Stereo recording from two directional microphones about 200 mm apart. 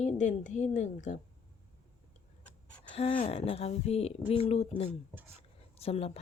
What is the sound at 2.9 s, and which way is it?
A woman's voice, 25° left (ahead or behind).